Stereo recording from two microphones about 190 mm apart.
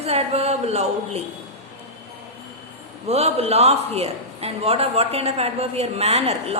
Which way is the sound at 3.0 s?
35° right (ahead or behind).